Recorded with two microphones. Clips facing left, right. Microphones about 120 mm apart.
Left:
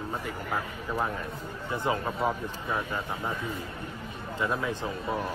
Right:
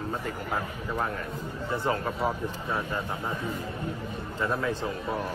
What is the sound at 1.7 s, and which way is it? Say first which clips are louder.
Speech: even; 15° left (ahead or behind).